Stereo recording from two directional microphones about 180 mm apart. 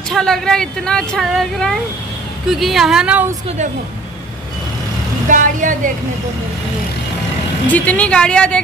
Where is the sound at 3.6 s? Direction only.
40° right (ahead or behind).